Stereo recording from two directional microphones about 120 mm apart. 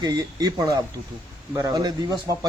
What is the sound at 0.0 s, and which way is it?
A man's voice, 35° right (ahead or behind).